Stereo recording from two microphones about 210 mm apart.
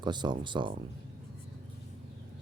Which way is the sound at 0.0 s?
20° right (ahead or behind).